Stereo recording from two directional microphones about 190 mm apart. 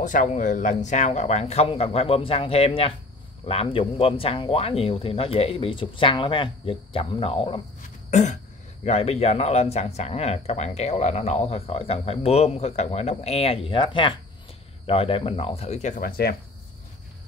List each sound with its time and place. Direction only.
0.0 s speech: 40° left (ahead or behind)
8.1 s throat clearing: 40° left (ahead or behind)
8.8 s speech: 35° left (ahead or behind); by 16.3 s 55° left (ahead or behind)